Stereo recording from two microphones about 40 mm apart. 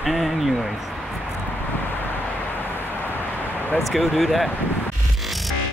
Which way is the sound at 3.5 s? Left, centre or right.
Left.